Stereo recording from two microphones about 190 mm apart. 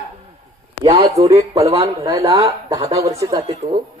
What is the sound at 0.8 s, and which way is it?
Speech, 20° right (ahead or behind).